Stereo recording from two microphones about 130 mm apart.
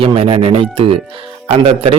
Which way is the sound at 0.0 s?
45° right (ahead or behind).